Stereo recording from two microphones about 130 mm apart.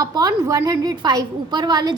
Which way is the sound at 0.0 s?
30° right (ahead or behind).